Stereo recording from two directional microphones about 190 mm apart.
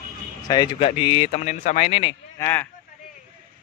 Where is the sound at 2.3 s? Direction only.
15° left (ahead or behind).